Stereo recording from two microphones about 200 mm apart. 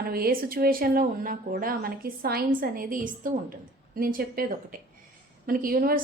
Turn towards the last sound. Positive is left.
turn(degrees=-45)  # may be behind; listen again after turning